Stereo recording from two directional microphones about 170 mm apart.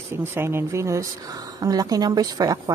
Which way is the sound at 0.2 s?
15° right (ahead or behind).